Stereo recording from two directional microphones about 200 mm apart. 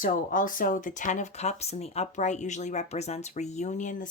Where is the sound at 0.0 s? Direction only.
40° left (ahead or behind).